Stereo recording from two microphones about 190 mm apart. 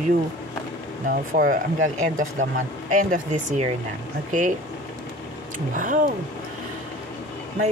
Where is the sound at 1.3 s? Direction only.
45° right (ahead or behind).